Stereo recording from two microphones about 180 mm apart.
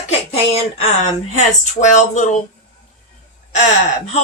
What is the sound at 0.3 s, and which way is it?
Speech, 35° left (ahead or behind).